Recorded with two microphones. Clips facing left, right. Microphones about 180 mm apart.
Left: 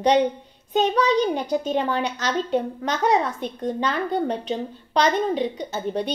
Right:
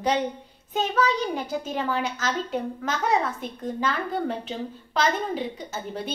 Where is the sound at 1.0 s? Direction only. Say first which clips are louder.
Left 4 dB; 20° left (ahead or behind).